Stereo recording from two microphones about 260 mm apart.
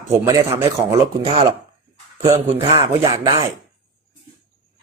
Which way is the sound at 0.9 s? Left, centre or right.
Right.